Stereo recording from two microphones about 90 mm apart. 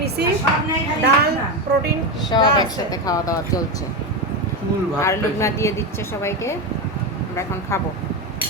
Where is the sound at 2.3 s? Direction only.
50° left (ahead or behind).